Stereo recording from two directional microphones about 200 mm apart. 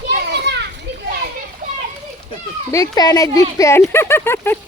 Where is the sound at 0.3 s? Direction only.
60° right (ahead or behind).